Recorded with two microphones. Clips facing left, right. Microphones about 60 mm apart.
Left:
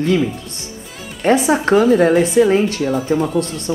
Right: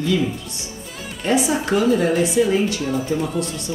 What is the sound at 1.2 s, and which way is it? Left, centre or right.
Speech, left.